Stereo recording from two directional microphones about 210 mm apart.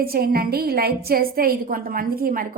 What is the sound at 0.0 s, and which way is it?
A woman's voice, 45° right (ahead or behind).